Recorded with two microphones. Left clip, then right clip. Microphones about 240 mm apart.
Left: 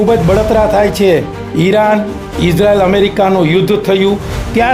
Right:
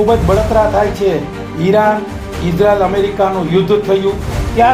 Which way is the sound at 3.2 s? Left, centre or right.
Left.